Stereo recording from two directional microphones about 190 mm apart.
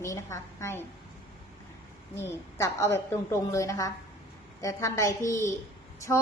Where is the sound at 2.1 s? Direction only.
15° left (ahead or behind).